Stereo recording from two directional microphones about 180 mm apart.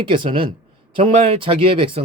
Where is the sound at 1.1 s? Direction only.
40° right (ahead or behind).